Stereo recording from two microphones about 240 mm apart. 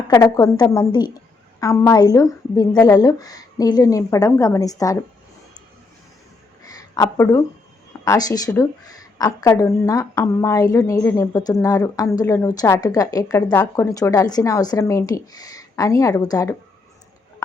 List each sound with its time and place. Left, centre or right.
0.1 s a woman's voice: centre
6.6 s a sound: centre
8.0 s a woman's voice: centre